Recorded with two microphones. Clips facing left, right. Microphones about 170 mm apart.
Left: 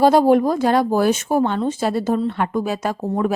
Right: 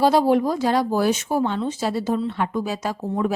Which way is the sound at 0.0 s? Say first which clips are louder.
Left 4 dB; 50° left (ahead or behind).